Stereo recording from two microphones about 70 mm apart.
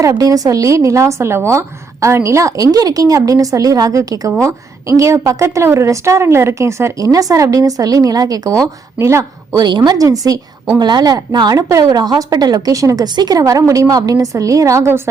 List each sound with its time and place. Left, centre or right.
0.2 s a woman's voice: right
7.0 s a woman's voice: right
9.0 s speech: right
9.6 s a woman's voice: right
10.8 s a woman's voice: right
13.1 s a woman's voice: right